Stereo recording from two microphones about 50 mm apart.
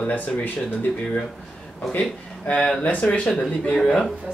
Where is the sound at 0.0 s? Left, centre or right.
Left.